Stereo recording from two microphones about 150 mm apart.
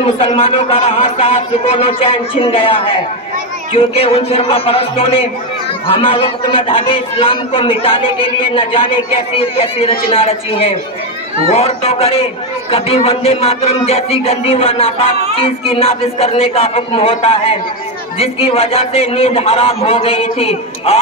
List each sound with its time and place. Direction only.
0.0 s a man's voice: 40° left (ahead or behind)